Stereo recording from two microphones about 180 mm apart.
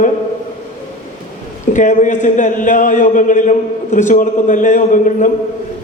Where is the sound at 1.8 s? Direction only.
45° left (ahead or behind).